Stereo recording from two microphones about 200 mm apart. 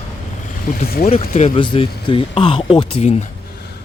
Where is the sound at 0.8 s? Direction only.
50° left (ahead or behind).